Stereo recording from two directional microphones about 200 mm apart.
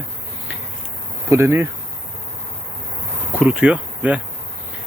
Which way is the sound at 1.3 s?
15° right (ahead or behind).